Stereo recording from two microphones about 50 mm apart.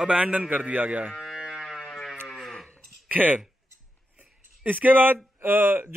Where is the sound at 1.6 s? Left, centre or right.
Centre.